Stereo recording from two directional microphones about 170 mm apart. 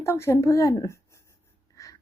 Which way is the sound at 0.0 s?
15° left (ahead or behind).